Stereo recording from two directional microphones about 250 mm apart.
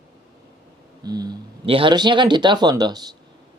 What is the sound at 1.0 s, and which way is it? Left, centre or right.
Speech, centre.